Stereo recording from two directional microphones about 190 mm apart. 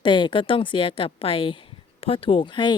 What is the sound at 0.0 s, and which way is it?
Speech, 25° left (ahead or behind).